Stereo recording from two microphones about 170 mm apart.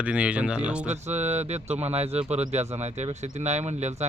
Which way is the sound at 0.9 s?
40° right (ahead or behind).